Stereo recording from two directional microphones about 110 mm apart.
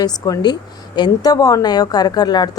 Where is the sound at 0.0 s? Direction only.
35° left (ahead or behind).